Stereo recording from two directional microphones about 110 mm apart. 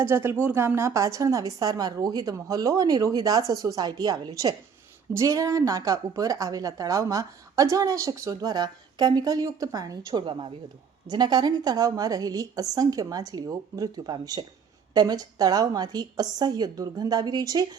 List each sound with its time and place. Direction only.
0.0 s a woman's voice: 20° right (ahead or behind)